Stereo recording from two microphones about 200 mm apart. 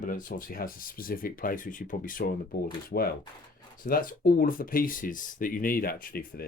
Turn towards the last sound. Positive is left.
turn(degrees=45)  # may be behind; listen again after turning